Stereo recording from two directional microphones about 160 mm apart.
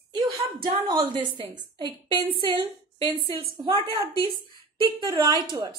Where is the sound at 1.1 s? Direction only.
30° right (ahead or behind).